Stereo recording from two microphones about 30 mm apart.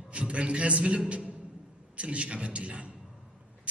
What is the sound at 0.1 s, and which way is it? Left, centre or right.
A man's voice, right.